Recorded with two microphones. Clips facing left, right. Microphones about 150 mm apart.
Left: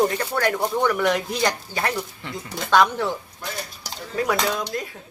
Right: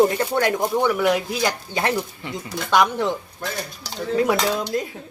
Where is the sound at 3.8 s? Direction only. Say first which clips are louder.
Right 5 dB; 25° right (ahead or behind).